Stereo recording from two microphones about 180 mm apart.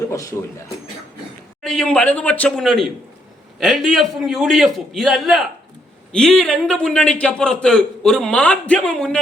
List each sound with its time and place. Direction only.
0.1 s speech: 15° left (ahead or behind)
1.6 s a man's voice: centre (ahead or behind)